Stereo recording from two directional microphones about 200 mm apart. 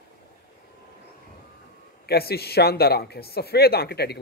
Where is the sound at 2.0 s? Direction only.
50° left (ahead or behind).